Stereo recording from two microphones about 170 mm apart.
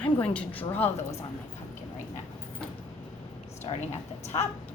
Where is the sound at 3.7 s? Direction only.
30° left (ahead or behind).